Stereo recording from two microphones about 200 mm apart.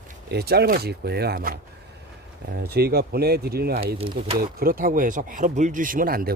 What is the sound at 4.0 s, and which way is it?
Speech, 30° right (ahead or behind).